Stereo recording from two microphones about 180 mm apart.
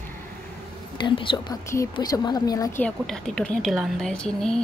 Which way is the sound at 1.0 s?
30° left (ahead or behind).